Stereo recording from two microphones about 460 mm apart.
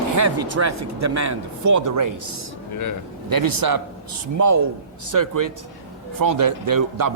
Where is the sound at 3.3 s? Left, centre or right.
Right.